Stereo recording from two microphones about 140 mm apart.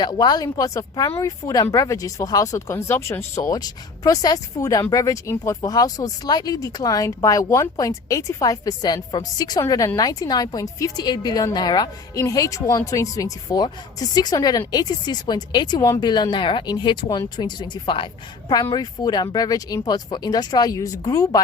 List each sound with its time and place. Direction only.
0.0 s speech: 30° left (ahead or behind)